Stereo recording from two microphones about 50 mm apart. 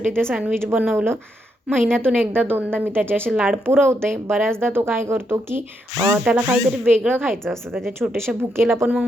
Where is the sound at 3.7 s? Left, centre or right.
Right.